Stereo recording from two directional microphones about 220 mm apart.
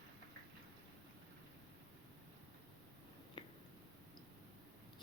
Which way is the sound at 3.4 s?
20° left (ahead or behind).